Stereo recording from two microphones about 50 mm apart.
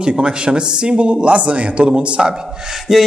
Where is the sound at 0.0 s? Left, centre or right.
Centre.